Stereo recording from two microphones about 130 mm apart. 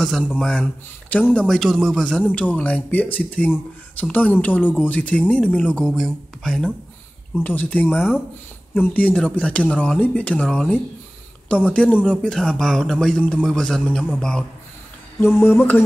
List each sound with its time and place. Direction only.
0.4 s a man's voice: 5° left (ahead or behind)
15.1 s speech: 20° left (ahead or behind)